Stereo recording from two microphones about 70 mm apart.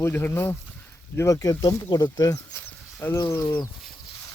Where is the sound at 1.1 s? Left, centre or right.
Left.